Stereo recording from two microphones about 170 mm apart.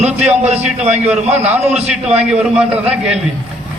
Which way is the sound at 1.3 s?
10° right (ahead or behind).